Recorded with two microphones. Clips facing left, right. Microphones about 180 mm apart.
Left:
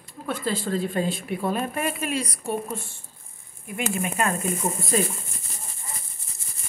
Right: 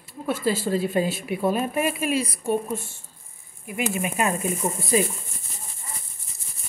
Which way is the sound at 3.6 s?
15° right (ahead or behind).